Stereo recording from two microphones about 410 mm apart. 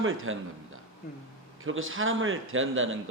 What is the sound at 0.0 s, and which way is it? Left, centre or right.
Speech, right.